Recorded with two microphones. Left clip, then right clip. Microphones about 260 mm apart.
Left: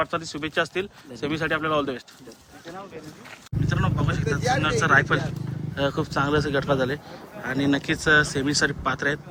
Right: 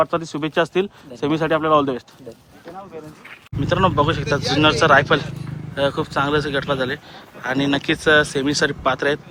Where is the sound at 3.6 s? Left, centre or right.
Centre.